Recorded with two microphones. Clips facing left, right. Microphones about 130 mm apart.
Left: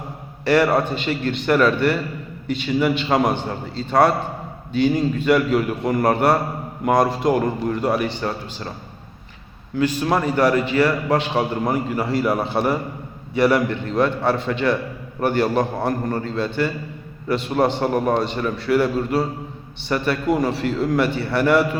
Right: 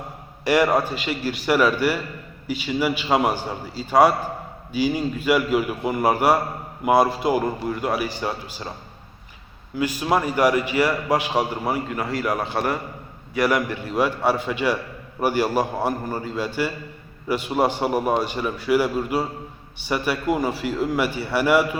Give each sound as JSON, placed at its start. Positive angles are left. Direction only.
{"t": 0.4, "sound": "a man's voice", "side_deg": -15}
{"t": 9.7, "sound": "a man's voice", "side_deg": -10}
{"t": 13.5, "sound": "a man's voice", "side_deg": -10}